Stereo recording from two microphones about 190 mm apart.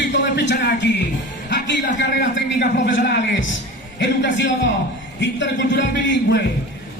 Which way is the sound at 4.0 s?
70° left (ahead or behind).